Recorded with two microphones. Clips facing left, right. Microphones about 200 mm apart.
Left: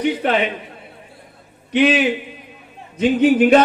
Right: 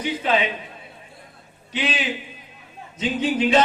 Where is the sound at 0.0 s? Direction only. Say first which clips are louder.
Left 4 dB; 60° left (ahead or behind).